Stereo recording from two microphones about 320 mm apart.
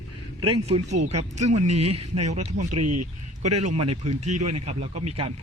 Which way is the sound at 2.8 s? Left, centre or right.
Right.